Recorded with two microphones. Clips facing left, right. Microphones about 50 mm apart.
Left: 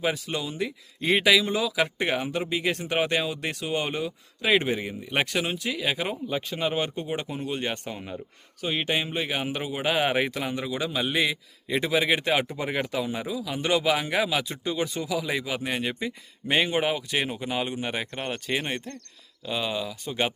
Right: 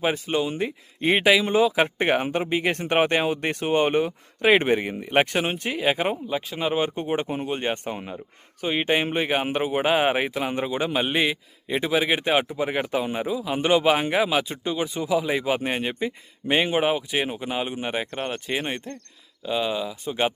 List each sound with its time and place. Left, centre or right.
0.0 s speech: right
6.2 s speech: centre
6.9 s speech: right
9.0 s speech: right
10.2 s speech: centre
10.5 s speech: right
12.5 s speech: centre
12.9 s speech: right
14.8 s speech: centre